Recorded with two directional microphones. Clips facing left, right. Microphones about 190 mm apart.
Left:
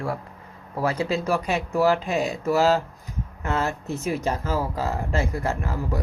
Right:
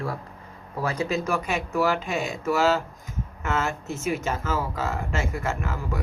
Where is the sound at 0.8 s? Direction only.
30° left (ahead or behind).